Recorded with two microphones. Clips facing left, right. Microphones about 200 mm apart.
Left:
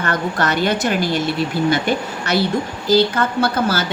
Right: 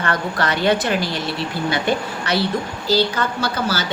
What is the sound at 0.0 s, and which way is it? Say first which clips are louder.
Speech: left 2 dB; 45° left (ahead or behind).